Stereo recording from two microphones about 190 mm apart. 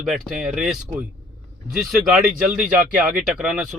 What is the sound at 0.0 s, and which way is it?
Speech, centre (ahead or behind).